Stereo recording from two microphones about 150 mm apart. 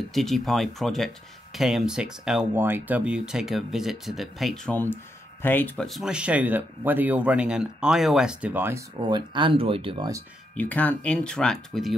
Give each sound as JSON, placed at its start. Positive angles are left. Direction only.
{"t": 0.1, "sound": "speech", "side_deg": 0}
{"t": 5.4, "sound": "speech", "side_deg": 10}
{"t": 5.9, "sound": "speech", "side_deg": 0}
{"t": 8.9, "sound": "speech", "side_deg": -30}
{"t": 10.6, "sound": "speech", "side_deg": 10}